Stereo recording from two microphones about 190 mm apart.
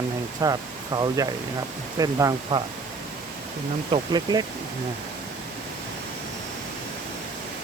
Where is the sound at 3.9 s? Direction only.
20° right (ahead or behind).